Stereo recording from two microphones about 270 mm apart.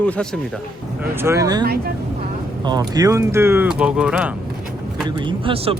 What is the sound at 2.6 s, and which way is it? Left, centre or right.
Speech, centre.